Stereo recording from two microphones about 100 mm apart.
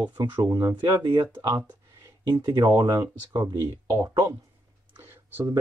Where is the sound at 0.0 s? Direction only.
50° right (ahead or behind).